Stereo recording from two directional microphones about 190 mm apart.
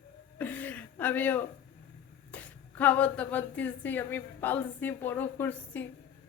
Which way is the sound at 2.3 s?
10° left (ahead or behind).